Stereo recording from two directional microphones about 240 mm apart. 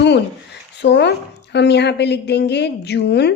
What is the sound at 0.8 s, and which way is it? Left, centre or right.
A woman's voice, left.